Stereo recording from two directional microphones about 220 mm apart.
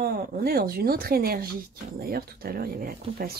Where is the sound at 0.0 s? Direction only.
45° right (ahead or behind).